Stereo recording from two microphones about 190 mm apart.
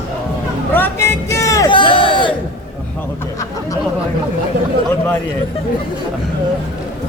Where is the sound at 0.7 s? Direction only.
10° left (ahead or behind).